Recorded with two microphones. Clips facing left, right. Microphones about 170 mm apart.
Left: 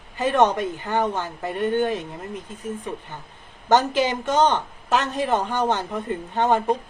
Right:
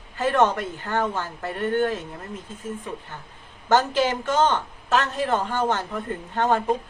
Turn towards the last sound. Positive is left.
turn(degrees=20)  # may be behind; listen again after turning